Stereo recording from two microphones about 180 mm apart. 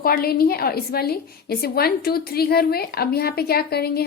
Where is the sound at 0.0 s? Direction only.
55° left (ahead or behind).